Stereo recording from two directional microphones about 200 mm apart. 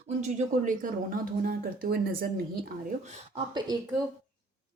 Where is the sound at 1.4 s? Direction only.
50° right (ahead or behind).